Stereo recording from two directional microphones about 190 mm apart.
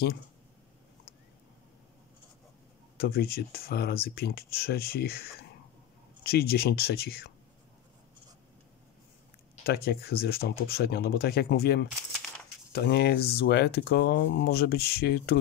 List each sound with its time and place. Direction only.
3.0 s speech: 55° left (ahead or behind)
9.7 s speech: 55° left (ahead or behind)
11.9 s coin: centre (ahead or behind)
12.7 s speech: 60° left (ahead or behind)